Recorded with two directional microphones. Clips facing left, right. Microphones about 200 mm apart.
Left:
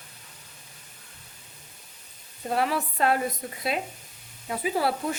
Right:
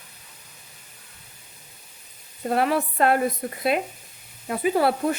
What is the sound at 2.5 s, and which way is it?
Speech, 55° right (ahead or behind).